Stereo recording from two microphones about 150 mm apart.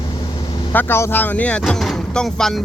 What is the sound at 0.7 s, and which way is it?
Speech, 15° left (ahead or behind).